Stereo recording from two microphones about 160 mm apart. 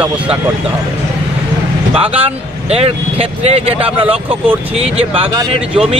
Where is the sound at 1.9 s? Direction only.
35° right (ahead or behind).